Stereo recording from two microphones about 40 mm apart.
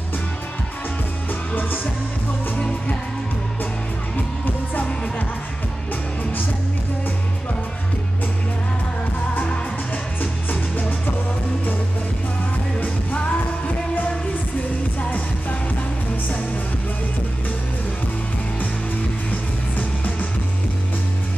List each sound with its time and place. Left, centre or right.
1.5 s music: left
10.2 s music: left
12.8 s music: left
15.0 s music: left